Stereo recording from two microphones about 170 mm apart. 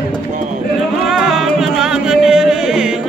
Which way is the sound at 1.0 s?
Centre (ahead or behind).